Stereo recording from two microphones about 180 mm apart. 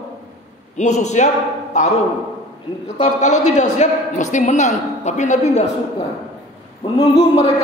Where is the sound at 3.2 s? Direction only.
40° left (ahead or behind).